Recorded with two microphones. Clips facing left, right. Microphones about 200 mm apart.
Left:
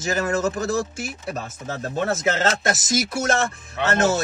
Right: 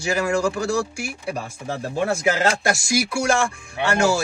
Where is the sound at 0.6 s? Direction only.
30° right (ahead or behind).